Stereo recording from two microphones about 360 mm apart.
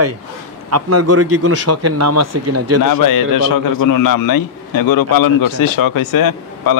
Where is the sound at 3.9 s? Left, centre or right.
Left.